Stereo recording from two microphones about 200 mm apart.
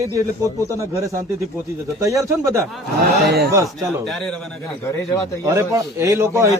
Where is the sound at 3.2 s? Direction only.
55° right (ahead or behind).